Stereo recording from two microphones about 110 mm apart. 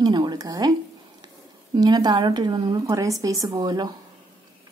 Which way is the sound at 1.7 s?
40° right (ahead or behind).